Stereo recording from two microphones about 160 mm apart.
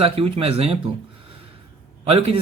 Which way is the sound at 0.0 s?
35° right (ahead or behind).